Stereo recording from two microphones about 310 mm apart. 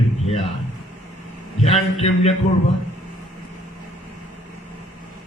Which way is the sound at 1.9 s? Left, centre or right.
Centre.